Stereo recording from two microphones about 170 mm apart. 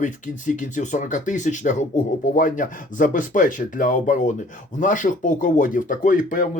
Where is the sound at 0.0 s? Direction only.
50° left (ahead or behind).